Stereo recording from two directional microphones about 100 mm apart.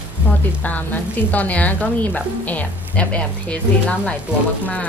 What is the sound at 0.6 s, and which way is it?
Stir, 15° left (ahead or behind).